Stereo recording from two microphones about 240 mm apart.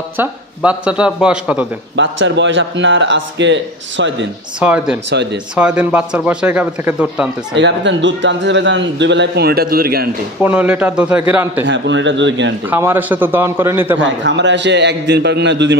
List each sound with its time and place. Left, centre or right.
0.2 s a man's voice: centre
2.0 s a man's voice: right
4.6 s a man's voice: centre
5.1 s a man's voice: right
5.6 s a man's voice: centre
7.5 s a man's voice: right
10.4 s a man's voice: centre
11.6 s a man's voice: right
12.6 s a man's voice: centre
13.9 s a man's voice: right